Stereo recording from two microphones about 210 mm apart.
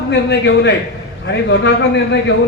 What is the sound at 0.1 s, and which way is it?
Speech, 55° left (ahead or behind).